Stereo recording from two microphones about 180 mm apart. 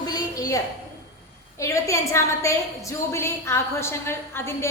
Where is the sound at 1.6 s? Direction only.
15° left (ahead or behind).